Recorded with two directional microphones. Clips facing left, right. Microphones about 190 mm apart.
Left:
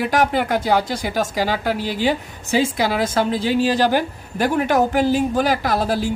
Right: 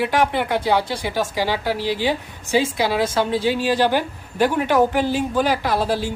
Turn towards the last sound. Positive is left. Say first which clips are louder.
# left 1 dB
turn(degrees=45)  # may be behind; listen again after turning